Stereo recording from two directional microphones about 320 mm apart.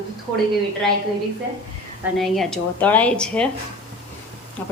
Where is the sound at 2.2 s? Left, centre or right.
Centre.